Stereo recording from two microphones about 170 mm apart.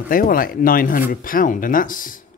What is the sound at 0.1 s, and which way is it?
Speech, 55° left (ahead or behind).